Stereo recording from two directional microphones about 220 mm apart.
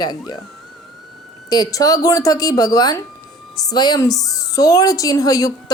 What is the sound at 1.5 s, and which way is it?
A woman's voice, 15° left (ahead or behind).